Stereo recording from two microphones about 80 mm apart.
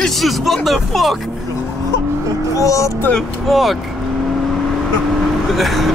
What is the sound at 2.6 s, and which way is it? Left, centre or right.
Speech, left.